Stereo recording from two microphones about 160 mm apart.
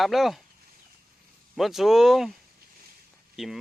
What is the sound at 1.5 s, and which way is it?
Speech, centre (ahead or behind).